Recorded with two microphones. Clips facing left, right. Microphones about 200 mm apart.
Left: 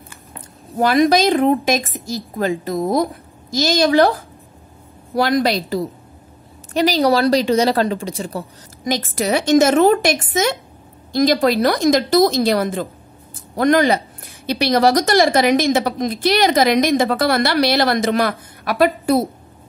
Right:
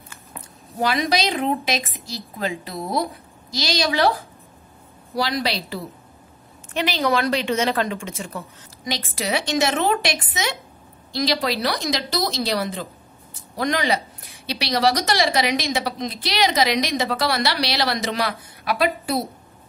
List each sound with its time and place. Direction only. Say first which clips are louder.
0.7 s a woman's voice: left 8 dB; 50° left (ahead or behind)
5.1 s a woman's voice: left 7 dB; 50° left (ahead or behind)
8.9 s a woman's voice: left 6 dB; 45° left (ahead or behind)